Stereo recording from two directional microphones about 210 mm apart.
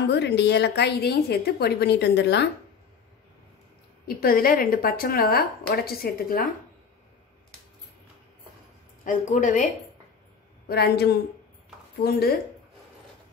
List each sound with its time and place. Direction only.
0.0 s a woman's voice: 55° left (ahead or behind)
4.2 s a woman's voice: 45° left (ahead or behind)
9.0 s a woman's voice: 35° left (ahead or behind)
10.7 s a woman's voice: 50° left (ahead or behind)